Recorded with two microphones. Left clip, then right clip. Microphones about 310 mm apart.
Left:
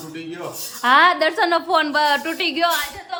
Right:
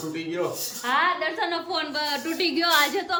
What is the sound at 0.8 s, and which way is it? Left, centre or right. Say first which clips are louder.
A woman's voice: left 9 dB; centre.